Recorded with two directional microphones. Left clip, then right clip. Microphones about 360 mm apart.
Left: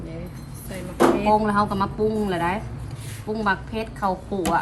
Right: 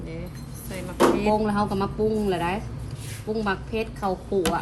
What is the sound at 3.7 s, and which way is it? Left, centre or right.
Speech, left.